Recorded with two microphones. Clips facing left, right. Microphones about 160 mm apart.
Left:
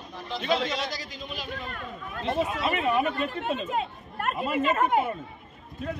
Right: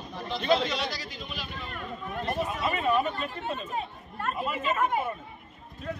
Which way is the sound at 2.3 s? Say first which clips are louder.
Left 4 dB; 25° left (ahead or behind).